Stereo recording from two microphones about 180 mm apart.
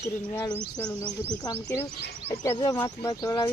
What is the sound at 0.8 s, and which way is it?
Speech, 5° left (ahead or behind).